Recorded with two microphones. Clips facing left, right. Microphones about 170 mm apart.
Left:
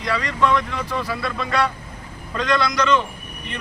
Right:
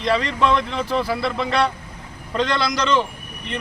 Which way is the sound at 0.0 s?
25° right (ahead or behind).